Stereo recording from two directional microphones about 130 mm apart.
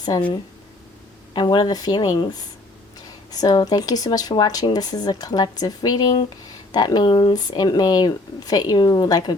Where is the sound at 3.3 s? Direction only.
30° left (ahead or behind).